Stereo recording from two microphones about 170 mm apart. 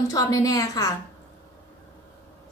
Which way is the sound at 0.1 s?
20° left (ahead or behind).